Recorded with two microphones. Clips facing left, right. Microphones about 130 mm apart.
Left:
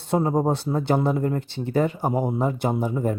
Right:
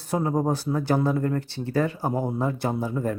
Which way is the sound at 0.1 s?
25° left (ahead or behind).